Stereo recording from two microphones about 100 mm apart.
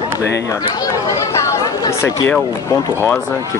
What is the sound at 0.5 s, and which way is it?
Speech, 40° left (ahead or behind).